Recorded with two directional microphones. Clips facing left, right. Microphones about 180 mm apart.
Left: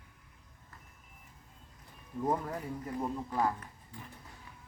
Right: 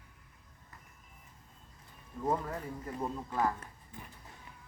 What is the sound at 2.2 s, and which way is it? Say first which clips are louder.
Speech: left 1 dB; 10° left (ahead or behind).